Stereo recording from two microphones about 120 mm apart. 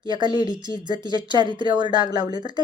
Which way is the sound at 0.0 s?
40° right (ahead or behind).